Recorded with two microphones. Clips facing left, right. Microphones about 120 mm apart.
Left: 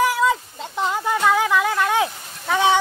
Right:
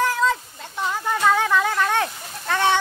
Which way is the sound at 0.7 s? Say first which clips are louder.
Left 3 dB; 20° left (ahead or behind).